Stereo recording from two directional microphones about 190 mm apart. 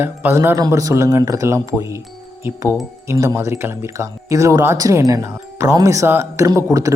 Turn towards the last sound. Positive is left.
turn(degrees=-15)  # may be behind; listen again after turning